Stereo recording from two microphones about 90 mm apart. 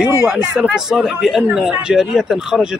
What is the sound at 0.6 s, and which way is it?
A man's voice, 5° right (ahead or behind).